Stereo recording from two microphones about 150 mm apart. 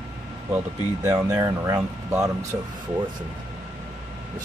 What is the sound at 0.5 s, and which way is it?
Speech, 15° right (ahead or behind).